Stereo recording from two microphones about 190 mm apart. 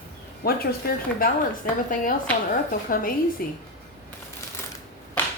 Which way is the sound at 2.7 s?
50° left (ahead or behind).